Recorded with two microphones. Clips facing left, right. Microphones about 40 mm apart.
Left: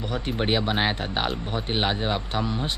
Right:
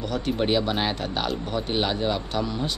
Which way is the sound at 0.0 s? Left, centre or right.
Centre.